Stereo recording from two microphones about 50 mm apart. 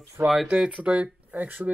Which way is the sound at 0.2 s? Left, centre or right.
Right.